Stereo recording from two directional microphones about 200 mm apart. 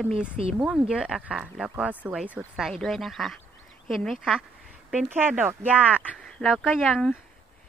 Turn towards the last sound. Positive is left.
turn(degrees=0)  # may be behind; listen again after turning